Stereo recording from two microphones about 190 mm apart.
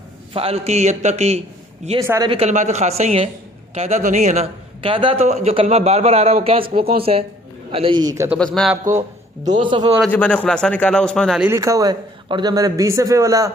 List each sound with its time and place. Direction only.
0.3 s a man's voice: 30° right (ahead or behind)
2.0 s a man's voice: 15° right (ahead or behind)
2.3 s a man's voice: 35° right (ahead or behind)
10.0 s a man's voice: 10° left (ahead or behind)
11.4 s a man's voice: 15° right (ahead or behind)